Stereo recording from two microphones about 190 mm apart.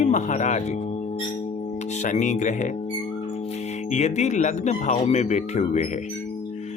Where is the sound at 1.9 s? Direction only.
40° left (ahead or behind).